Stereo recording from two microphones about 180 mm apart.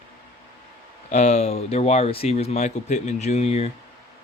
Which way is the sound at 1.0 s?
40° left (ahead or behind).